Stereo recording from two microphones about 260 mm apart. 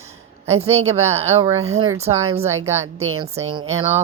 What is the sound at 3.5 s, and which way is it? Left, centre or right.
Speech, right.